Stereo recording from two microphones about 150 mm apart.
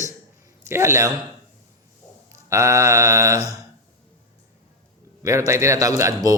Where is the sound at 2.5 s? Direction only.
20° right (ahead or behind).